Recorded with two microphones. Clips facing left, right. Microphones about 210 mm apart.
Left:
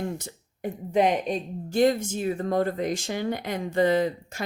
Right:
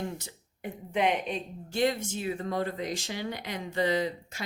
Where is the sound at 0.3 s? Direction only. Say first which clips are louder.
Left 7 dB; 40° left (ahead or behind).